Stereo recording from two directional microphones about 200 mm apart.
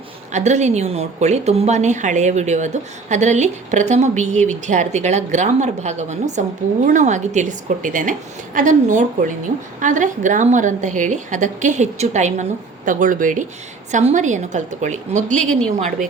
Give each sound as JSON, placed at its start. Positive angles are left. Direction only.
{"t": 0.3, "sound": "a woman's voice", "side_deg": -35}